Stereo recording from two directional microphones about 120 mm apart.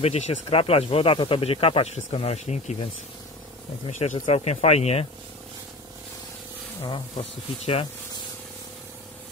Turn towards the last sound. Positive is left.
turn(degrees=55)  # may be behind; listen again after turning